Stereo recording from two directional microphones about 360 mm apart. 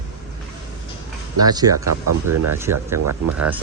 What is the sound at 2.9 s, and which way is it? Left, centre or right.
Speech, right.